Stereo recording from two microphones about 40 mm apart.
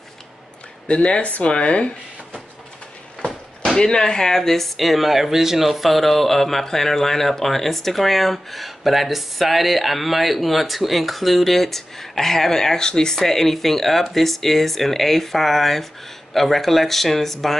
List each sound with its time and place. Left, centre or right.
0.8 s speech: left
3.7 s speech: centre